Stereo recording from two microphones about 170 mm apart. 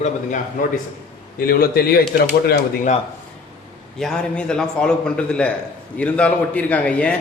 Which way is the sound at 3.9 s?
5° left (ahead or behind).